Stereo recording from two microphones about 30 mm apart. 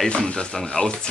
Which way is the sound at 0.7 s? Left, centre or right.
Left.